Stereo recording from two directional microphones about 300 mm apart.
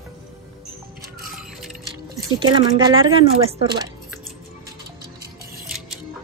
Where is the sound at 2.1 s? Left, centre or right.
Centre.